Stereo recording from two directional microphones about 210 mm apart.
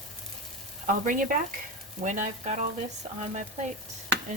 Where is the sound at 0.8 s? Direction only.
40° right (ahead or behind).